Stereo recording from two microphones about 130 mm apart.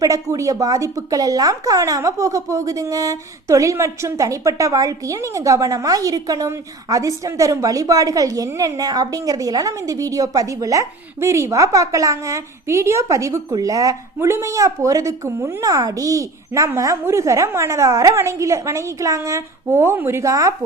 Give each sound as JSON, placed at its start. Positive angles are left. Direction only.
{"t": 0.0, "sound": "speech", "side_deg": -25}